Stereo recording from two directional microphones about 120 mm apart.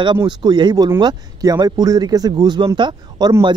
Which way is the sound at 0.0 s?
35° right (ahead or behind).